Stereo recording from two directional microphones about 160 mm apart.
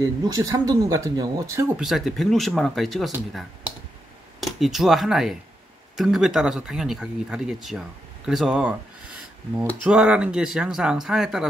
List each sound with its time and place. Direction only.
0.2 s speech: 25° right (ahead or behind)
1.8 s speech: centre (ahead or behind)
9.8 s speech: 5° right (ahead or behind)